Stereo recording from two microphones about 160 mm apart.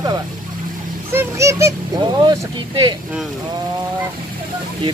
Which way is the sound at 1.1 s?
20° right (ahead or behind).